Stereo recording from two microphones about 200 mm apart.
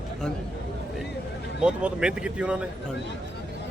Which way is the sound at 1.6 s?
5° right (ahead or behind).